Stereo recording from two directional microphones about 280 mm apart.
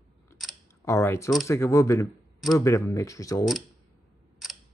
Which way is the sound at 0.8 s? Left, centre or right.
Centre.